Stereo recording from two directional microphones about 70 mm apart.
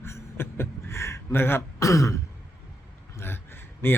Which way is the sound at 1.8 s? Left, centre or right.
Left.